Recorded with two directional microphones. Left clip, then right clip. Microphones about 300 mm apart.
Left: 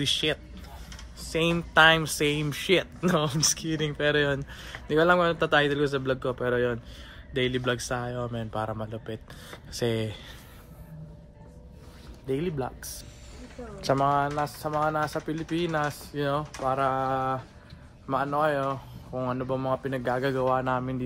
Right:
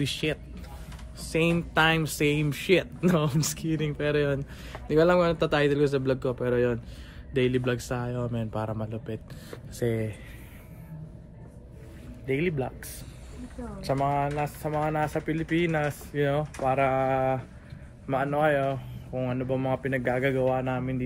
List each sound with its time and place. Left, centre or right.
0.0 s speech: centre
12.3 s speech: centre
13.7 s speech: left